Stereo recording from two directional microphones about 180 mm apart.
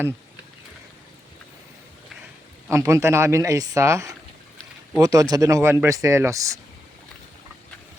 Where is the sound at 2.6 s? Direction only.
15° right (ahead or behind).